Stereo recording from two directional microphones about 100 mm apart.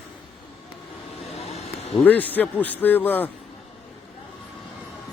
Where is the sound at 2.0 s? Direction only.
15° left (ahead or behind).